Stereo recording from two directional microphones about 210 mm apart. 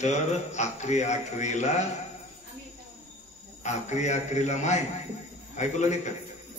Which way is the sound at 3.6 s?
35° left (ahead or behind).